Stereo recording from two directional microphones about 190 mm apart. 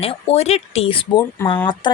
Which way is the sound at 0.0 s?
30° left (ahead or behind).